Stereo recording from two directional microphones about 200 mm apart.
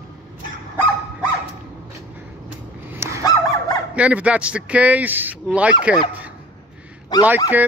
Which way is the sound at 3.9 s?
5° right (ahead or behind).